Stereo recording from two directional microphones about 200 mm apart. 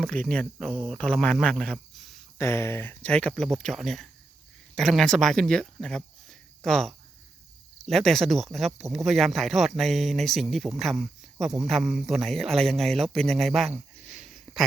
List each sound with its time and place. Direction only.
0.0 s speech: 5° left (ahead or behind)
2.4 s speech: 15° left (ahead or behind)